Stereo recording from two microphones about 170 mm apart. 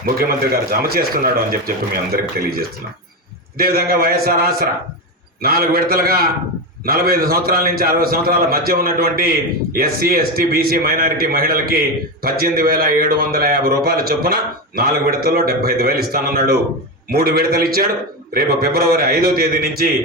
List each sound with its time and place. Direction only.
0.0 s a man's voice: 60° right (ahead or behind)